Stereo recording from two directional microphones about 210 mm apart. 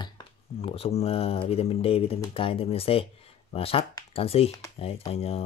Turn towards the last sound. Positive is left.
turn(degrees=30)  # may be behind; listen again after turning